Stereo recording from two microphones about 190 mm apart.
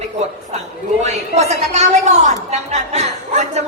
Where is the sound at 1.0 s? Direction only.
35° right (ahead or behind).